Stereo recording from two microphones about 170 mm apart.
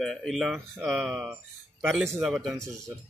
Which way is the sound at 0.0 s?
Centre (ahead or behind).